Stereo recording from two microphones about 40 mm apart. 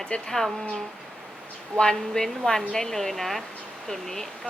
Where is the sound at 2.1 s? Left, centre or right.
Centre.